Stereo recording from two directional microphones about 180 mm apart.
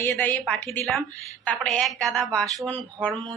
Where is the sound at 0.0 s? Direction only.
10° left (ahead or behind).